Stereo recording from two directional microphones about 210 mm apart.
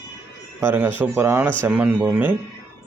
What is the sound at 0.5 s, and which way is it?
Speech, 10° right (ahead or behind).